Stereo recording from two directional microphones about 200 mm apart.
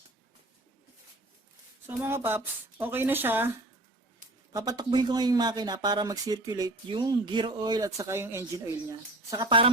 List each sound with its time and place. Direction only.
1.9 s speech: 10° right (ahead or behind)
4.5 s speech: 20° right (ahead or behind)